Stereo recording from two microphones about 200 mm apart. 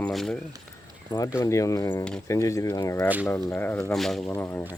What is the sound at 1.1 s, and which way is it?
Speech, 20° left (ahead or behind).